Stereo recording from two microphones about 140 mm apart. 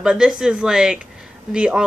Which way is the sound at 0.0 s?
5° right (ahead or behind).